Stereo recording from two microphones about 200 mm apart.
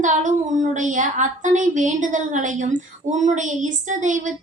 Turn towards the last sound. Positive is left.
turn(degrees=-40)  # may be behind; listen again after turning